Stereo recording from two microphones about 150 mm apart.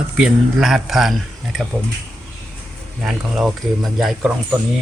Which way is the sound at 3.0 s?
5° right (ahead or behind).